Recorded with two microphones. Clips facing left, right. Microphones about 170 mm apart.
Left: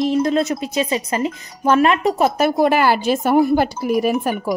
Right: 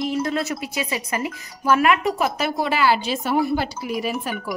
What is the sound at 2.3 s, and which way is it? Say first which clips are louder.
Speech: left 8 dB; 50° left (ahead or behind).